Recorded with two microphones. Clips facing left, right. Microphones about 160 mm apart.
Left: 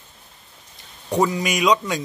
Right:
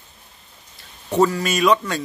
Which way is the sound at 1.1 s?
15° left (ahead or behind).